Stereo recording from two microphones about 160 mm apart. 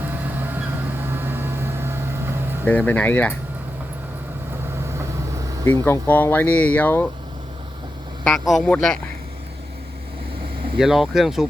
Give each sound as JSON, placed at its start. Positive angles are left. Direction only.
{"t": 0.0, "sound": "vehicle", "side_deg": -10}
{"t": 2.6, "sound": "speech", "side_deg": 10}
{"t": 4.9, "sound": "vehicle", "side_deg": -20}
{"t": 5.6, "sound": "speech", "side_deg": 15}
{"t": 8.2, "sound": "speech", "side_deg": 0}
{"t": 10.8, "sound": "speech", "side_deg": 0}